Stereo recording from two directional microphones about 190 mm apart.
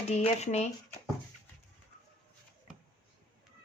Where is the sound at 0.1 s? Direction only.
35° left (ahead or behind).